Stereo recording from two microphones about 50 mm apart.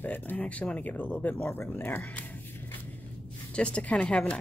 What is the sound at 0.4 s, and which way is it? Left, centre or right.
Speech, left.